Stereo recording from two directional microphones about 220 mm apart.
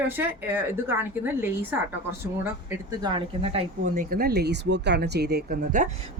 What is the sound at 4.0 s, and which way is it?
Speech, 40° right (ahead or behind).